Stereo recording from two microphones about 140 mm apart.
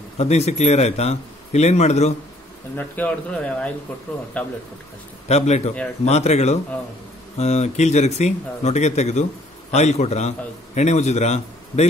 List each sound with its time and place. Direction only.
0.2 s a man's voice: 50° left (ahead or behind)
2.7 s a man's voice: 10° left (ahead or behind)
5.3 s a man's voice: 50° left (ahead or behind)